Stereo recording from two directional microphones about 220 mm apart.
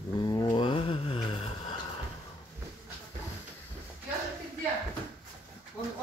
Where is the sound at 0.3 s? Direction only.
20° left (ahead or behind).